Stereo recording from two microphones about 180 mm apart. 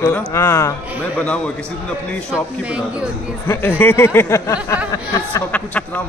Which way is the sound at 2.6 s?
5° right (ahead or behind).